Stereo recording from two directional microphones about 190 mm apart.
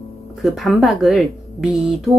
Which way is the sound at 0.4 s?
Centre (ahead or behind).